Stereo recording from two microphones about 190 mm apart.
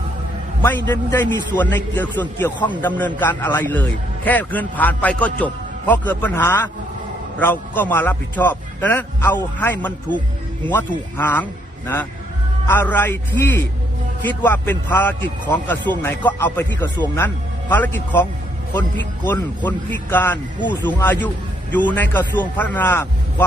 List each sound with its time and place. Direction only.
0.9 s a man's voice: 10° left (ahead or behind)
12.6 s a man's voice: 10° left (ahead or behind)